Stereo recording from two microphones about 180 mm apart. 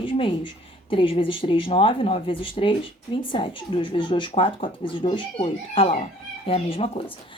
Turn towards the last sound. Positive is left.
turn(degrees=30)  # may be behind; listen again after turning